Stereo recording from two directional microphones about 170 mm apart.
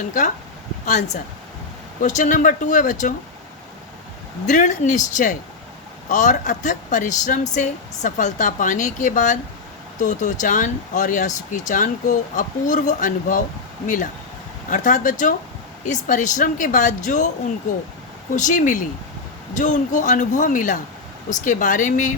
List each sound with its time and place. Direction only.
0.9 s speech: 45° left (ahead or behind)
4.4 s speech: 45° left (ahead or behind)
18.3 s speech: 45° left (ahead or behind)